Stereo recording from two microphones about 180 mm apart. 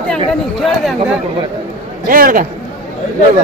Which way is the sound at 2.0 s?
50° right (ahead or behind).